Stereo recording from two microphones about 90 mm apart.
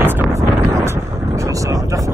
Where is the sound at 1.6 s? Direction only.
40° right (ahead or behind).